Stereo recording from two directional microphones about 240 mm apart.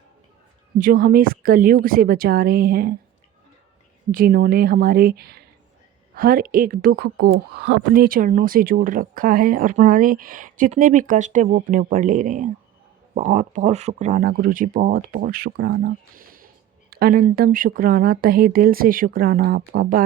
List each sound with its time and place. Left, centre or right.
0.8 s speech: right
4.1 s speech: right